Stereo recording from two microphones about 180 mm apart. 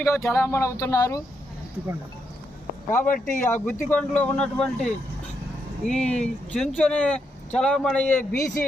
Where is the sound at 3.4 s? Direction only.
10° left (ahead or behind).